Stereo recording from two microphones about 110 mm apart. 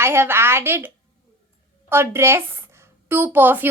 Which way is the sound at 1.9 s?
20° right (ahead or behind).